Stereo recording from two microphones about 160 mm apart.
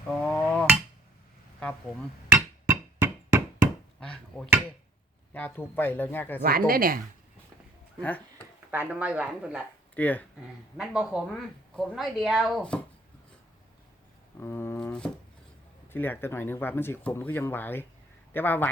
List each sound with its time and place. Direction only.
0.2 s hammer: 5° left (ahead or behind)
2.6 s chop: 10° right (ahead or behind)
4.0 s speech: 5° left (ahead or behind)
6.4 s speech: 65° right (ahead or behind)
8.7 s speech: 10° right (ahead or behind)
9.9 s speech: 10° left (ahead or behind)
10.8 s a woman's voice: 5° right (ahead or behind)
14.3 s a sound: 15° left (ahead or behind)
15.9 s speech: 15° left (ahead or behind)